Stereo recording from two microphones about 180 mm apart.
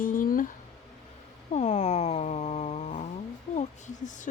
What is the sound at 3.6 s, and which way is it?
Speech, 45° left (ahead or behind).